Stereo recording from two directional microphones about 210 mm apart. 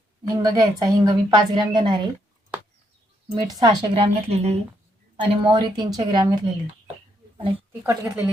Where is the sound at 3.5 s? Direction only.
20° right (ahead or behind).